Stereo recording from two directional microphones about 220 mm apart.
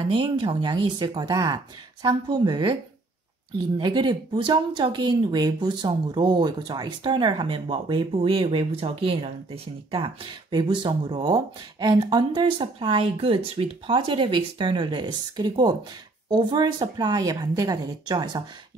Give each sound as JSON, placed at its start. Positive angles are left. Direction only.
{"t": 0.1, "sound": "speech", "side_deg": -20}